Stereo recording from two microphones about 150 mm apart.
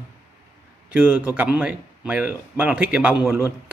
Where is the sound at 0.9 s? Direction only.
10° right (ahead or behind).